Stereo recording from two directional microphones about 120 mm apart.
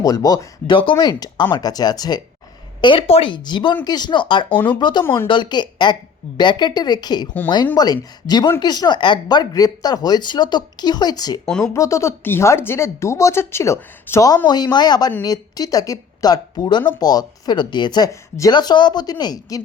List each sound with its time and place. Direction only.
0.0 s speech: 30° left (ahead or behind)
2.8 s speech: 50° left (ahead or behind); by 18.5 s 25° left (ahead or behind)
18.5 s speech: 40° left (ahead or behind)